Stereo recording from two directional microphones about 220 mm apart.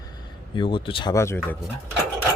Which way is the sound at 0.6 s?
20° left (ahead or behind).